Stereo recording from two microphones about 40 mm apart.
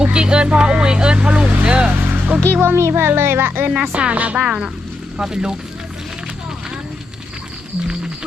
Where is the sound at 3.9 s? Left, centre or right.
Right.